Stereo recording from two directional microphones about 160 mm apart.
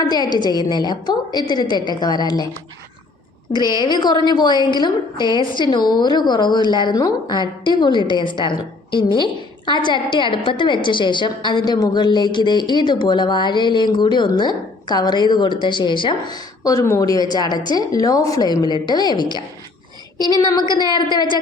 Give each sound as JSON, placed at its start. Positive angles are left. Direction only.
{"t": 0.1, "sound": "a woman's voice", "side_deg": 25}
{"t": 3.5, "sound": "a woman's voice", "side_deg": 30}
{"t": 20.4, "sound": "a woman's voice", "side_deg": 25}